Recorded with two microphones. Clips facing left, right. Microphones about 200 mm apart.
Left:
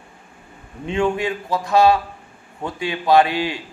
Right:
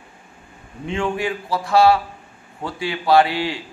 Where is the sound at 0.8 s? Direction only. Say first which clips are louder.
Left 2 dB; 20° left (ahead or behind).